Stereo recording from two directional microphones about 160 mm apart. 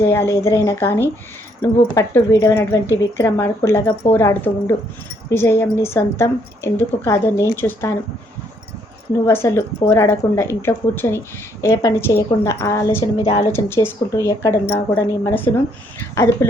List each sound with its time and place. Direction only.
0.0 s speech: 15° left (ahead or behind)
9.2 s speech: 15° left (ahead or behind)
13.1 s a woman's voice: 35° left (ahead or behind)
13.5 s speech: 15° left (ahead or behind)